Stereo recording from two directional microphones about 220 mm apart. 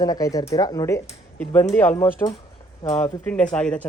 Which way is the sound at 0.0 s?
15° left (ahead or behind).